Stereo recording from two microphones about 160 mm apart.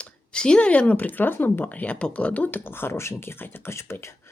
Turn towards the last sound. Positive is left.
turn(degrees=15)  # may be behind; listen again after turning